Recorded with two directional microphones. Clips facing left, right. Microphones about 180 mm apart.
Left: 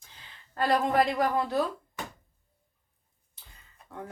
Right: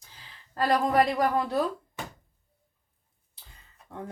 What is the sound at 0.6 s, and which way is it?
Speech, 35° right (ahead or behind).